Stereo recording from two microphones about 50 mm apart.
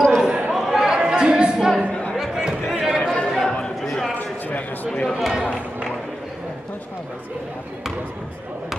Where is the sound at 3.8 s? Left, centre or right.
Centre.